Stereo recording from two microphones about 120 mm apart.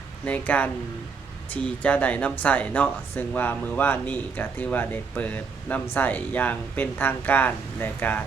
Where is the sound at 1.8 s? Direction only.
10° left (ahead or behind).